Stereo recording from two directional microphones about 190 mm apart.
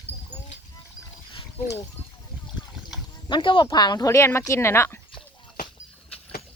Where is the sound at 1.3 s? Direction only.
20° left (ahead or behind).